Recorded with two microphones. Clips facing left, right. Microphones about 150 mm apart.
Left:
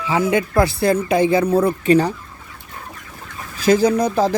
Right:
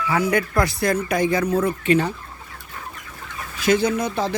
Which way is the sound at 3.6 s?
40° left (ahead or behind).